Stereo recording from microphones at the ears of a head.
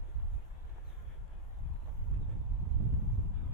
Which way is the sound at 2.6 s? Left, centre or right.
Right.